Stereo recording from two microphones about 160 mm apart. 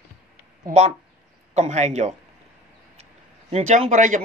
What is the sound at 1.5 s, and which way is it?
Speech, 45° right (ahead or behind).